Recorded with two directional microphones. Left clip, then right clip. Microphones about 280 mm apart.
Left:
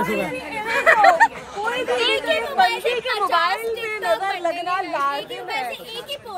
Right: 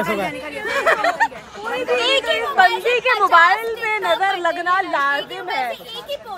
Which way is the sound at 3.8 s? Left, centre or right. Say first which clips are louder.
Right 4 dB; right.